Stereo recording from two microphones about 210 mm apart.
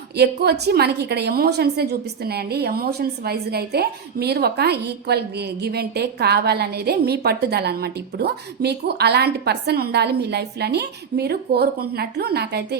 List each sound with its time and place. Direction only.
0.2 s a woman's voice: 50° right (ahead or behind)